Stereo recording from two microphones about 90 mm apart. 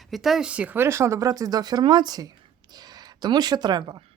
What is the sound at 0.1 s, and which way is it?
Speech, 5° right (ahead or behind).